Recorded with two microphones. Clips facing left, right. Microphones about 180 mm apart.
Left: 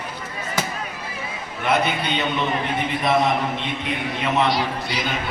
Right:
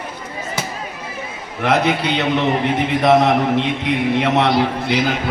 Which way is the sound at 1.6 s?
85° right.